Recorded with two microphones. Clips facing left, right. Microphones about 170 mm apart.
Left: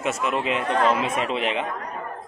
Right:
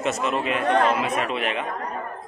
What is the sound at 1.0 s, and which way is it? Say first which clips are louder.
Speech: even; 25° left (ahead or behind).